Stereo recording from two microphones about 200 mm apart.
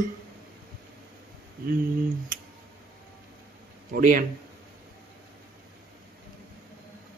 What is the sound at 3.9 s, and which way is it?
Speech, 45° right (ahead or behind).